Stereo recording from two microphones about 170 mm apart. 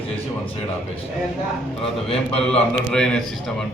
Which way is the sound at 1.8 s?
35° left (ahead or behind).